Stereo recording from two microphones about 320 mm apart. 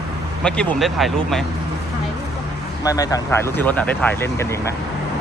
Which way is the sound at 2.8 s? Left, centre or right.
Centre.